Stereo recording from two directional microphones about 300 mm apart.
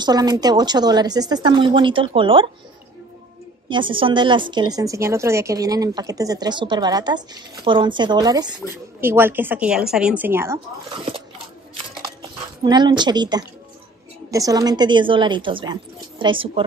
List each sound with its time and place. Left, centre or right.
0.0 s a woman's voice: centre
3.6 s a woman's voice: centre
12.6 s a woman's voice: centre